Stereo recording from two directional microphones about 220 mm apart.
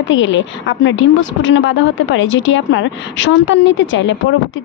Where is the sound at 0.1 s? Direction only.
55° left (ahead or behind).